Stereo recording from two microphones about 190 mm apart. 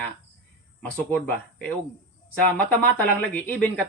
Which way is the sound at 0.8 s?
10° left (ahead or behind).